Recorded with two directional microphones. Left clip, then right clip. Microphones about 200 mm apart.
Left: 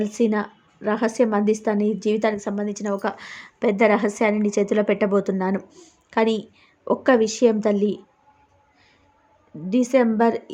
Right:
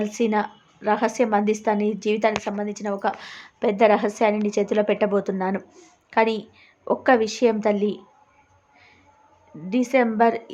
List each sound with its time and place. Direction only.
0.0 s a woman's voice: 15° left (ahead or behind)
9.6 s a woman's voice: 20° left (ahead or behind)